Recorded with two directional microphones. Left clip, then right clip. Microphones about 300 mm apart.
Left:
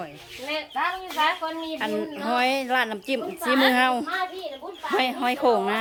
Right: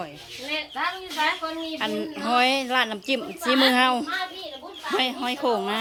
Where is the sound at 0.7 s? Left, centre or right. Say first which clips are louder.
Left 2 dB; centre.